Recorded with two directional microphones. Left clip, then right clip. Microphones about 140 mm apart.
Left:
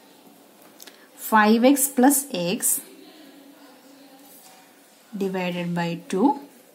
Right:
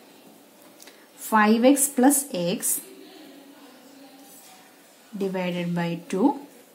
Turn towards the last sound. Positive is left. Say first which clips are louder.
# left 2 dB
turn(degrees=25)  # may be behind; listen again after turning